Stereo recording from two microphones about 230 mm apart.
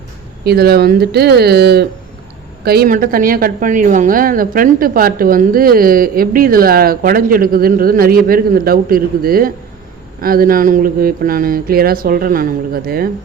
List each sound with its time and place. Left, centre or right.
0.4 s speech: right